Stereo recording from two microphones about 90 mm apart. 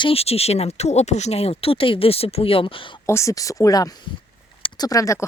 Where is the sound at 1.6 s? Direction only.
90° left.